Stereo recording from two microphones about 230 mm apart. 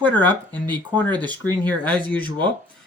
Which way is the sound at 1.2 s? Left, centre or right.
Centre.